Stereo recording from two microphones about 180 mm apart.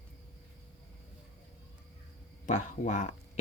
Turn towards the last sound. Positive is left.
turn(degrees=40)  # may be behind; listen again after turning